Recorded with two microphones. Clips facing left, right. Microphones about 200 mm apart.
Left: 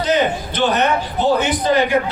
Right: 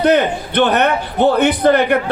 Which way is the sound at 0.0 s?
60° right (ahead or behind).